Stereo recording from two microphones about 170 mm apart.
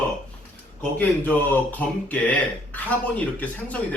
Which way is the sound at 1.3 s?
10° left (ahead or behind).